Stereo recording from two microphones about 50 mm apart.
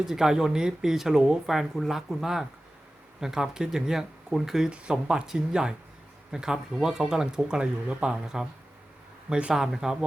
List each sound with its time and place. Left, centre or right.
0.0 s speech: centre
4.7 s speech: right